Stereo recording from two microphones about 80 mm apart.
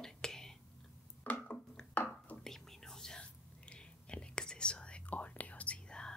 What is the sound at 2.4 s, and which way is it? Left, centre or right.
Whispering, centre.